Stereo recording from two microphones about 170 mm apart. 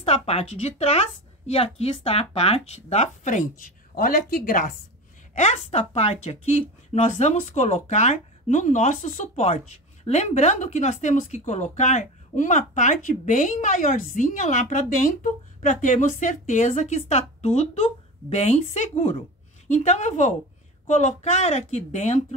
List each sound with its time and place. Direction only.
0.0 s a woman's voice: 35° left (ahead or behind); by 4.7 s 55° left (ahead or behind)
5.3 s a woman's voice: 40° left (ahead or behind)